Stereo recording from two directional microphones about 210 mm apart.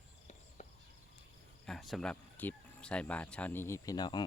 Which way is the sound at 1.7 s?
Centre (ahead or behind).